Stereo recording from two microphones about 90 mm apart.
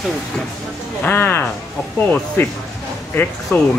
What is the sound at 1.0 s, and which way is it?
Speech, 25° left (ahead or behind).